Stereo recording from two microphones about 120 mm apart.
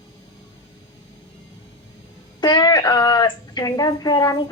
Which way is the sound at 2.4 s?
40° left (ahead or behind).